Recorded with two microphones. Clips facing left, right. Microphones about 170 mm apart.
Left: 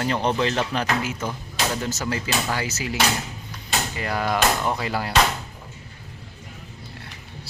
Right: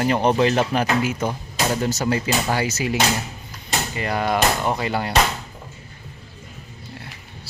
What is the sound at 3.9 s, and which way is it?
Speech, centre (ahead or behind).